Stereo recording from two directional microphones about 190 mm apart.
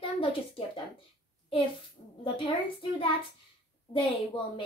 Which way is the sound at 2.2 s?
25° left (ahead or behind).